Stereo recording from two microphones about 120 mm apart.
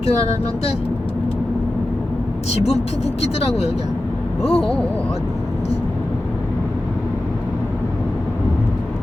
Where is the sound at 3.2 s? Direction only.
60° left (ahead or behind).